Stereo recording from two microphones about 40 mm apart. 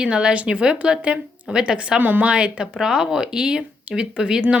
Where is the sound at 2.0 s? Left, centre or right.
Right.